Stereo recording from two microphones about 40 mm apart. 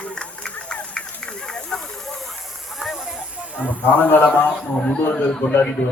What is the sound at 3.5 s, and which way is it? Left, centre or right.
Speech, right.